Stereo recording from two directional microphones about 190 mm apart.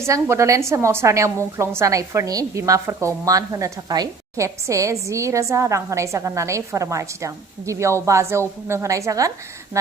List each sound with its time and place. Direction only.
0.0 s a woman's voice: 15° right (ahead or behind)